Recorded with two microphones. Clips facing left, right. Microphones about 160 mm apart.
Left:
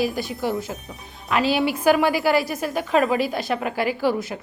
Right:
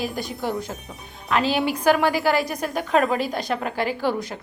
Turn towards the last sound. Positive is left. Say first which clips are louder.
# left 2 dB
turn(degrees=5)  # may be behind; listen again after turning